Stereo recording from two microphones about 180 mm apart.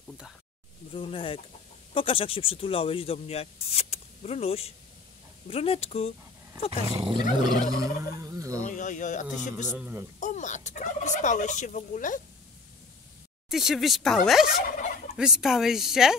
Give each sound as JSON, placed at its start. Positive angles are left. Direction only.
{"t": 0.9, "sound": "speech", "side_deg": 30}
{"t": 7.0, "sound": "fowl", "side_deg": -25}
{"t": 8.6, "sound": "turkey", "side_deg": 45}
{"t": 9.7, "sound": "speech", "side_deg": -10}
{"t": 10.2, "sound": "turkey", "side_deg": 40}
{"t": 13.5, "sound": "speech", "side_deg": 0}